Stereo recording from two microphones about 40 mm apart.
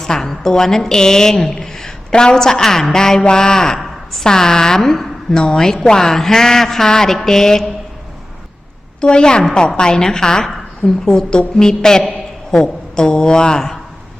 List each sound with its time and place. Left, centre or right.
0.0 s a woman's voice: centre
3.8 s a sound: centre
4.3 s a woman's voice: centre
9.0 s a woman's voice: left